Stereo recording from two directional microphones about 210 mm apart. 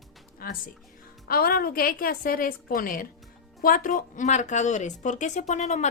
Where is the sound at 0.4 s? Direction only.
45° left (ahead or behind).